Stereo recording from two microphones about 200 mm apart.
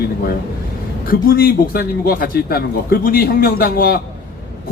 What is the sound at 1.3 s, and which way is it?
Speech, 50° left (ahead or behind).